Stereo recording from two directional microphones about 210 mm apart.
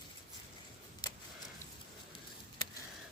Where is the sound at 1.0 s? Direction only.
20° left (ahead or behind).